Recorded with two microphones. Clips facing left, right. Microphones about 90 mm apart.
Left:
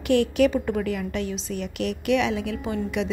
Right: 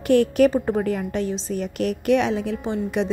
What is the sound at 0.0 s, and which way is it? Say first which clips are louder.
A woman's voice: right 3 dB; 40° right (ahead or behind).